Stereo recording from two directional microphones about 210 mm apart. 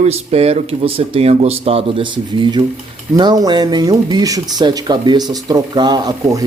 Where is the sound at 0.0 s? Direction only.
30° right (ahead or behind).